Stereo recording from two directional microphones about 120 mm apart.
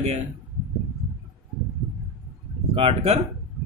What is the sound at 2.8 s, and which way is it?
Speech, 55° right (ahead or behind).